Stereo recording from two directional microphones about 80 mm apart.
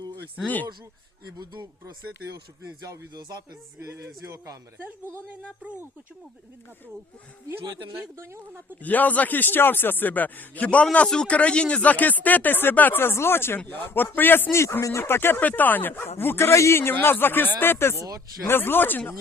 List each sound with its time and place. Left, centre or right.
0.4 s speech: left
3.1 s music: right
4.8 s a woman's voice: right
7.9 s speech: right
8.8 s speech: left